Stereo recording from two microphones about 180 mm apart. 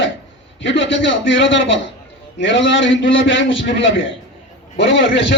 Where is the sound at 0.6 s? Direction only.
90° left.